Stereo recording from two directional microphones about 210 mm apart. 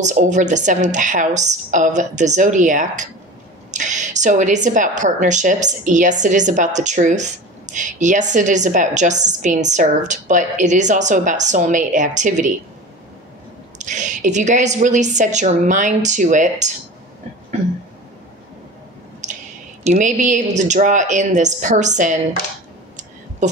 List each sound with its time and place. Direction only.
0.0 s a woman's voice: 35° right (ahead or behind)
13.7 s a woman's voice: 35° right (ahead or behind)
19.8 s a woman's voice: 35° right (ahead or behind)
23.4 s speech: 35° right (ahead or behind)